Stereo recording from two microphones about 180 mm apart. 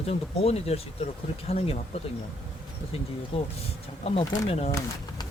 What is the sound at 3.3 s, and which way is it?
Speech, 30° left (ahead or behind).